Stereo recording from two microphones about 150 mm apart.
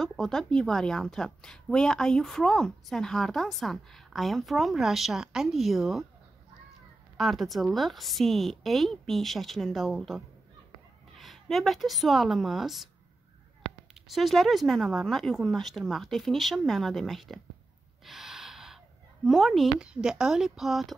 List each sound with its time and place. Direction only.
0.0 s a woman's voice: 5° left (ahead or behind)
7.2 s a woman's voice: centre (ahead or behind)
13.9 s a woman's voice: centre (ahead or behind)
18.0 s gasp: centre (ahead or behind)
19.2 s a woman's voice: centre (ahead or behind)